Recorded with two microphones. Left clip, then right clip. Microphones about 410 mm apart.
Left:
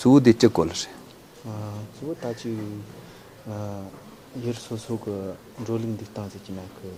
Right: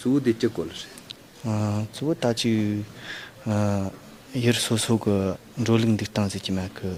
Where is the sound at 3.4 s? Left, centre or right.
Right.